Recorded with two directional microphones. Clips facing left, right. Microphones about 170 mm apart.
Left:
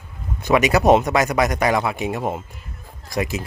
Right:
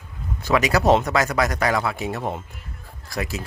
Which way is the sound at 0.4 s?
20° left (ahead or behind).